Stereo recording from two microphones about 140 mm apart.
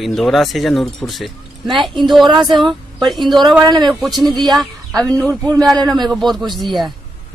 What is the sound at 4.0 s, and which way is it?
Speech, centre (ahead or behind).